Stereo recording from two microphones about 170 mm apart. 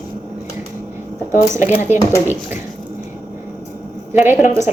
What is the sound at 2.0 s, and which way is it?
Speech, 20° left (ahead or behind).